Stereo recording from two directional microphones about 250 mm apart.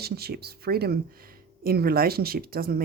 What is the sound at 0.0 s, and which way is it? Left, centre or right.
Speech, right.